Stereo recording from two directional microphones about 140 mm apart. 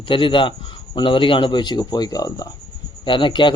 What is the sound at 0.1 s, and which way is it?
A man's voice, 35° left (ahead or behind).